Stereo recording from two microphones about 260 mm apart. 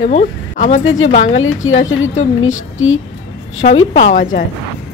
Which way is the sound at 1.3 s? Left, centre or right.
Left.